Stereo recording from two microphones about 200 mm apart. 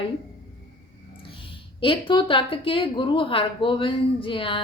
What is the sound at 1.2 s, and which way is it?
A woman's voice, 25° left (ahead or behind).